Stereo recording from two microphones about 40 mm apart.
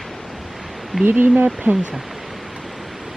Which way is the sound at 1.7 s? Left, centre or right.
Right.